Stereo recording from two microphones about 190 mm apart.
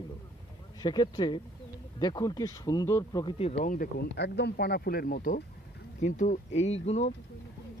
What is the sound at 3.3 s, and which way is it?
Speech, 35° left (ahead or behind).